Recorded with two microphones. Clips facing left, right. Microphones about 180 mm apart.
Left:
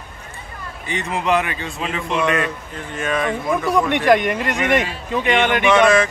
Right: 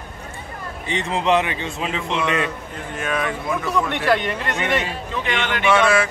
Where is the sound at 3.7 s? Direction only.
15° left (ahead or behind).